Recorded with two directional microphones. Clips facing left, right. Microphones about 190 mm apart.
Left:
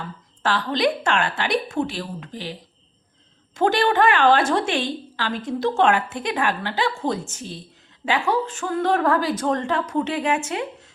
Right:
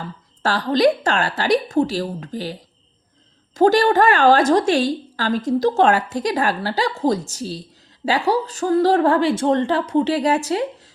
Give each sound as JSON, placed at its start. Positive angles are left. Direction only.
{"t": 0.4, "sound": "a woman's voice", "side_deg": -40}